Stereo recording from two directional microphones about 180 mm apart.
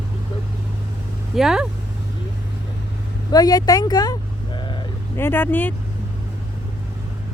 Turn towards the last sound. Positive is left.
turn(degrees=10)  # may be behind; listen again after turning